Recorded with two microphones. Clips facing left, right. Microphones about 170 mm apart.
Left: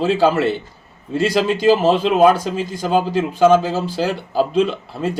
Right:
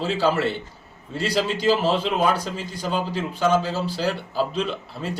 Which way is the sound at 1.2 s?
50° left (ahead or behind).